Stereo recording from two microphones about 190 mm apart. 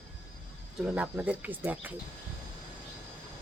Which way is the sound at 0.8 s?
5° right (ahead or behind).